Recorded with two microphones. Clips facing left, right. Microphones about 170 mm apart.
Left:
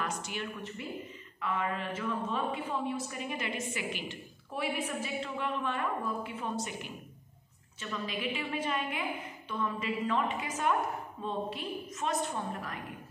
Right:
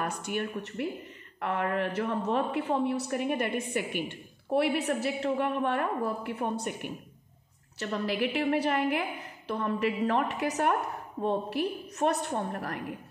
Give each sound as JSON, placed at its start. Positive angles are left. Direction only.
{"t": 0.0, "sound": "a woman's voice", "side_deg": -55}